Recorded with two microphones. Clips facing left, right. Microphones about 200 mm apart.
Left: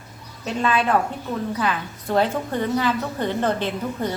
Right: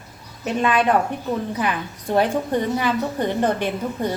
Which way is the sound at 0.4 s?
15° right (ahead or behind).